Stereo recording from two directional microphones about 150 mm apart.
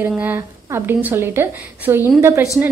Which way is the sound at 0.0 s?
15° right (ahead or behind).